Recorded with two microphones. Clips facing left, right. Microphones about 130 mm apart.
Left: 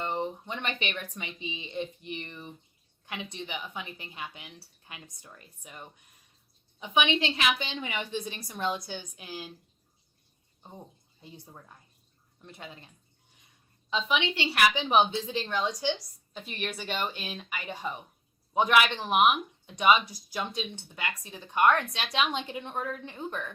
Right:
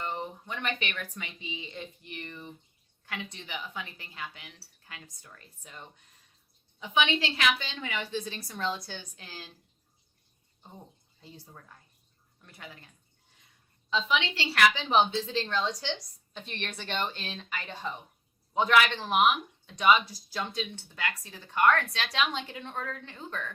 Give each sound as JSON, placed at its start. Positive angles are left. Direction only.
{"t": 0.0, "sound": "a woman's voice", "side_deg": 20}
{"t": 11.2, "sound": "a woman's voice", "side_deg": 20}
{"t": 13.9, "sound": "speech", "side_deg": 20}